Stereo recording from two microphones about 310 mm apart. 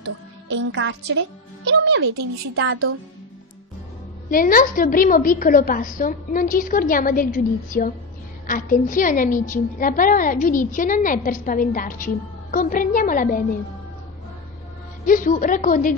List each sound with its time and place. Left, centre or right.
0.0 s a child's voice: right
4.3 s a woman's voice: left
15.0 s a woman's voice: left